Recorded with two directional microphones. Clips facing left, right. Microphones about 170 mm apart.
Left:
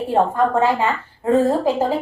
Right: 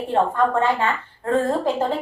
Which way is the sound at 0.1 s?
10° left (ahead or behind).